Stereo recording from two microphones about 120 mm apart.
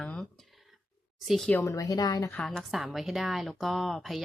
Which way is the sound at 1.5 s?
25° left (ahead or behind).